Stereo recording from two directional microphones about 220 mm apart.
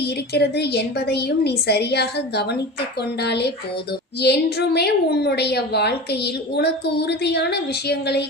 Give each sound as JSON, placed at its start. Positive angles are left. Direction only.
{"t": 0.3, "sound": "a woman's voice", "side_deg": 50}